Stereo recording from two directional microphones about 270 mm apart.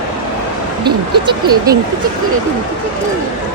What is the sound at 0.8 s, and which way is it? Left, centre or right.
Speech, centre.